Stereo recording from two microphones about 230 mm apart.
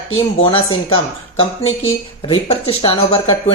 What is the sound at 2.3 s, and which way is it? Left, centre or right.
Speech, left.